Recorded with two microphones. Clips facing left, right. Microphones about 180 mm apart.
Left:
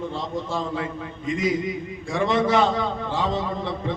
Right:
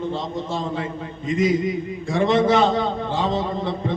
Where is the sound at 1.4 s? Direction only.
25° right (ahead or behind).